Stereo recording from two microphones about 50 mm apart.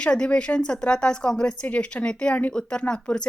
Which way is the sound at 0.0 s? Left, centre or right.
Centre.